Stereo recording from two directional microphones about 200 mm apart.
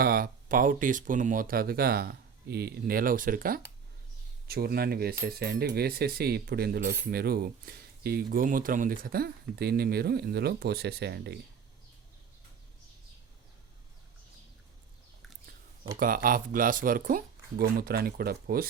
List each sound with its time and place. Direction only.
0.0 s speech: 50° right (ahead or behind)
16.0 s speech: 45° right (ahead or behind)